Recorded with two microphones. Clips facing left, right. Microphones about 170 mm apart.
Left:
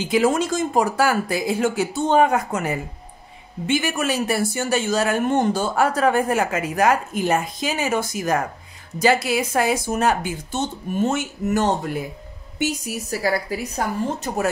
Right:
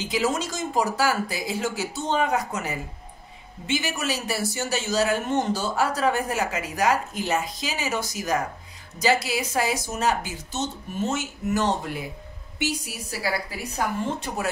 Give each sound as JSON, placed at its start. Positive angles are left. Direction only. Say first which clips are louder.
{"t": 0.0, "sound": "speech", "louder": "left 6 dB", "side_deg": 55}